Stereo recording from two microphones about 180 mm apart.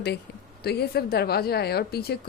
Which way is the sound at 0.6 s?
60° left (ahead or behind).